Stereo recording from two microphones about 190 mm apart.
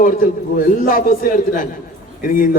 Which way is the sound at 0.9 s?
50° left (ahead or behind).